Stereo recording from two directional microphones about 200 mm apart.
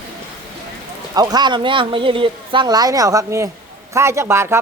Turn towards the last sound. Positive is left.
turn(degrees=-15)  # may be behind; listen again after turning